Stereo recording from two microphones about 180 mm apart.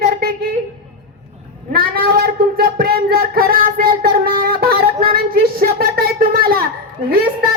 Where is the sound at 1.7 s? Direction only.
55° right (ahead or behind).